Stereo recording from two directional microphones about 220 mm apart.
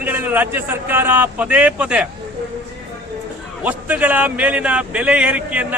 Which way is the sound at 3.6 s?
5° right (ahead or behind).